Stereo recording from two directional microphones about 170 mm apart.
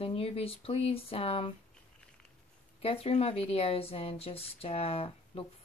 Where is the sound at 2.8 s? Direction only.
35° left (ahead or behind).